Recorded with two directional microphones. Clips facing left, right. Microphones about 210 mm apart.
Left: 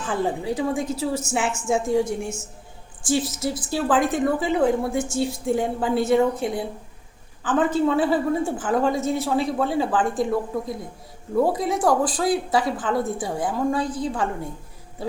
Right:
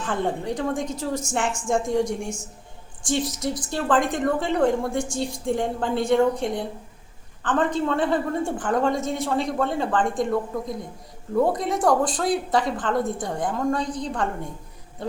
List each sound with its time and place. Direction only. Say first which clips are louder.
0.0 s a woman's voice: left 1 dB; 5° left (ahead or behind)